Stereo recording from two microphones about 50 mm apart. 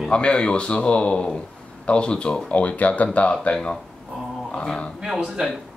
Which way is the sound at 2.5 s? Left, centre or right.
Left.